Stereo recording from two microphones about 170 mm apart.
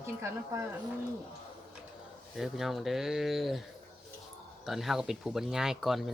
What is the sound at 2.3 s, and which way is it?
Speech, centre (ahead or behind).